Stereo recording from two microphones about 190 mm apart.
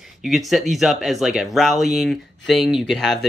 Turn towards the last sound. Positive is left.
turn(degrees=0)  # may be behind; listen again after turning